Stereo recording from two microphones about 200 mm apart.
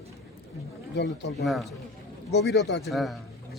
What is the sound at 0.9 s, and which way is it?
Speech, 60° left (ahead or behind).